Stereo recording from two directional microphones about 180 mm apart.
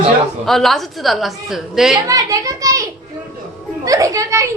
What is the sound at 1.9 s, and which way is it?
Speech, 20° right (ahead or behind).